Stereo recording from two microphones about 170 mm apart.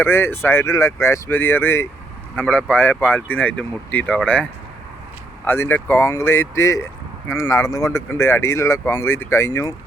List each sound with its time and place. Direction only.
0.0 s speech: 15° left (ahead or behind)
5.5 s speech: 10° left (ahead or behind)